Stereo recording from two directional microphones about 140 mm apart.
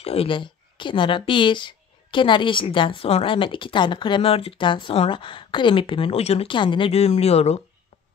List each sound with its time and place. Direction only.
0.0 s a woman's voice: 45° left (ahead or behind)